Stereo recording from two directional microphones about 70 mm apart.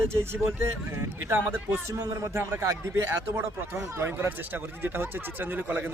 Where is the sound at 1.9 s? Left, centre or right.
Right.